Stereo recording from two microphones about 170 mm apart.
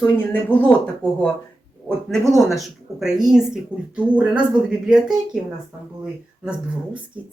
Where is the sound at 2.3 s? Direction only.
Centre (ahead or behind).